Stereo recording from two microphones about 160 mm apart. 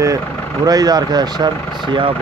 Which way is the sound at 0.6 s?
25° right (ahead or behind).